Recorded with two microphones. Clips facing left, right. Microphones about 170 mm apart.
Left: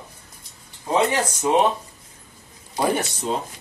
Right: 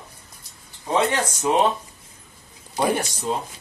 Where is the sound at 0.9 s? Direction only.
10° left (ahead or behind).